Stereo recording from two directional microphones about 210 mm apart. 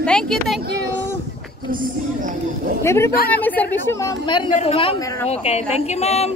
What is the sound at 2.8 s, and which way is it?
A woman's voice, 15° left (ahead or behind).